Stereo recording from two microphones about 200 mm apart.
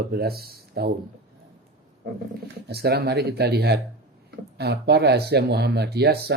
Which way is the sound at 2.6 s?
50° right (ahead or behind).